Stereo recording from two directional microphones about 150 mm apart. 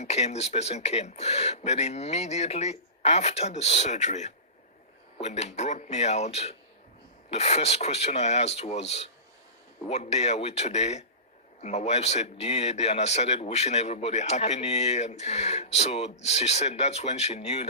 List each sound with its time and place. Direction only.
0.0 s a man's voice: 45° left (ahead or behind)